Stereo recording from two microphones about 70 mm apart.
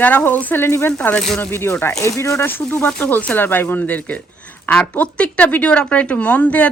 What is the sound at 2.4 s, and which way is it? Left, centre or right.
A woman's voice, left.